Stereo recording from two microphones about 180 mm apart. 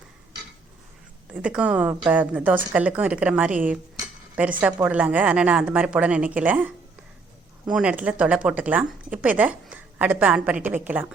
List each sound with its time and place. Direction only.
1.3 s speech: 5° right (ahead or behind)
4.6 s speech: 10° right (ahead or behind)